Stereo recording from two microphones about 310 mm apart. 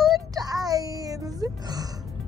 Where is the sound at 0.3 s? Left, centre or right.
Centre.